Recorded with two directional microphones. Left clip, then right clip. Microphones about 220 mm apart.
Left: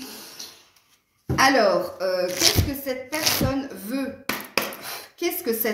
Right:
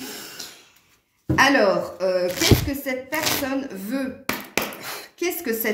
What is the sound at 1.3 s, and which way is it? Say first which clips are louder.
A woman's voice: right 1 dB; 40° right (ahead or behind).